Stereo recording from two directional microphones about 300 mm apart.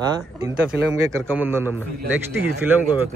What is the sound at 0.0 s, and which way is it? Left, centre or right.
A man's voice, centre.